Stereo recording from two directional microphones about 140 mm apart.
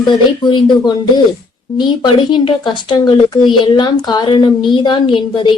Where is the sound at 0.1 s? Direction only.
35° left (ahead or behind).